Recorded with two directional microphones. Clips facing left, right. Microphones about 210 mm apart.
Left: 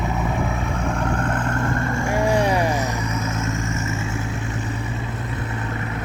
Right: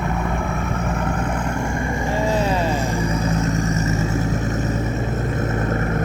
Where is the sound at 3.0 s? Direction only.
30° right (ahead or behind).